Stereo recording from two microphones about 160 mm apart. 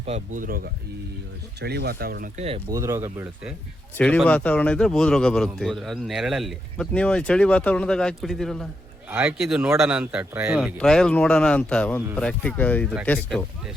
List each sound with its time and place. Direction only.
0.3 s speech: 65° right (ahead or behind)
1.6 s speech: 90° right; by 2.3 s 65° right (ahead or behind)
2.6 s speech: 20° right (ahead or behind)
3.9 s speech: 10° left (ahead or behind)
9.0 s speech: 10° right (ahead or behind)
10.8 s speech: 5° left (ahead or behind)